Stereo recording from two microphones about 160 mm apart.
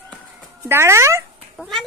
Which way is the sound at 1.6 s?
Centre (ahead or behind).